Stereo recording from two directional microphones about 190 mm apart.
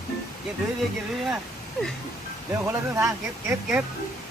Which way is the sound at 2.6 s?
15° right (ahead or behind).